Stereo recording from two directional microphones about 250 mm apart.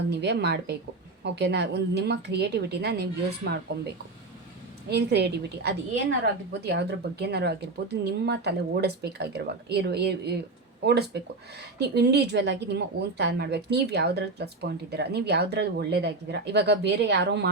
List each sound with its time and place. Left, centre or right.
0.1 s a woman's voice: right
4.9 s a woman's voice: right